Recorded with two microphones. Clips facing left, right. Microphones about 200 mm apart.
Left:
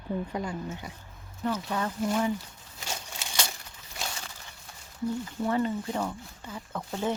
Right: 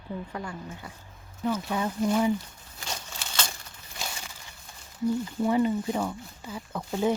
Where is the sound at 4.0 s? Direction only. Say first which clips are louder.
Even; centre (ahead or behind).